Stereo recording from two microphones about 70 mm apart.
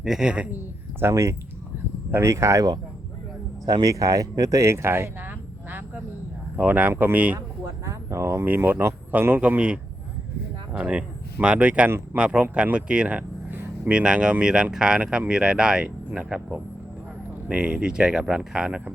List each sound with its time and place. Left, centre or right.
0.0 s speech: centre
0.5 s speech: right
1.1 s speech: right
3.7 s speech: right
4.6 s speech: right
6.6 s speech: right
7.3 s a sound: right
8.4 s speech: right